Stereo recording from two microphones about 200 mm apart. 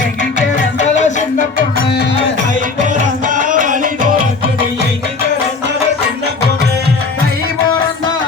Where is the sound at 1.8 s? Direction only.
55° left (ahead or behind).